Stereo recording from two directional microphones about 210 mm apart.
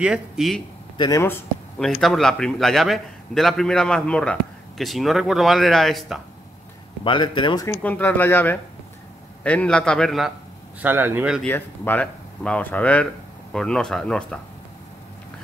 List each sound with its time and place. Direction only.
0.0 s speech: centre (ahead or behind)
0.9 s speech: 20° left (ahead or behind); by 6.2 s centre (ahead or behind)
7.1 s speech: 25° left (ahead or behind)
7.8 s speech: 10° left (ahead or behind)
10.8 s speech: 10° right (ahead or behind)
11.4 s speech: 10° left (ahead or behind)